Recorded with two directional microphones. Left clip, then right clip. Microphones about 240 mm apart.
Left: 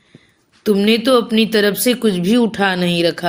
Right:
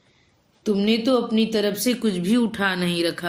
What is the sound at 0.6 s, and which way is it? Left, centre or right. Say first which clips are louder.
Speech: left 7 dB; left.